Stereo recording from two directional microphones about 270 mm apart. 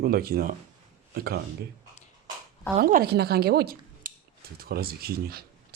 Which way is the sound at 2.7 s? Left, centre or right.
Right.